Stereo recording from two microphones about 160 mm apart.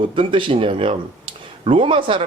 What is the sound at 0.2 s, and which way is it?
Speech, 30° right (ahead or behind).